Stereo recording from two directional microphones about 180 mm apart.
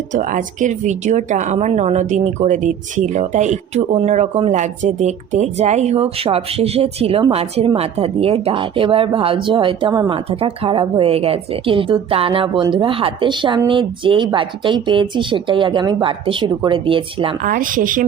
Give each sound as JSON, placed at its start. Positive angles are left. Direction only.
{"t": 0.1, "sound": "speech", "side_deg": -45}
{"t": 17.4, "sound": "speech", "side_deg": -50}